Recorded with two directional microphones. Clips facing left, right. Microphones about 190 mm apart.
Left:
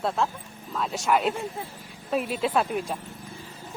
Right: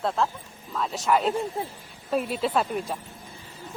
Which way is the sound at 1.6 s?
35° right (ahead or behind).